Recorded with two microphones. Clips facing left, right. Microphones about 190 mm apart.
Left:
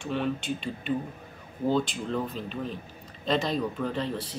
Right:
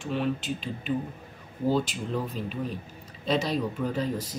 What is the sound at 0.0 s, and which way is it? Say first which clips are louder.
Speech: right 1 dB; centre (ahead or behind).